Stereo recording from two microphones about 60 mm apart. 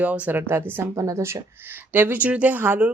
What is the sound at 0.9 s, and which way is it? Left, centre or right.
Speech, right.